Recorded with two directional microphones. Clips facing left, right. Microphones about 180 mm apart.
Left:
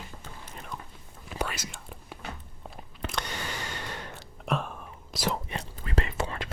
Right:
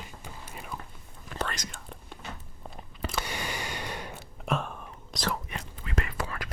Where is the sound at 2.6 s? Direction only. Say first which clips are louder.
Right 1 dB; 5° right (ahead or behind).